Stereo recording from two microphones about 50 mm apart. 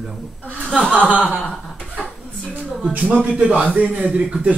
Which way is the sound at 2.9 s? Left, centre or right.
Right.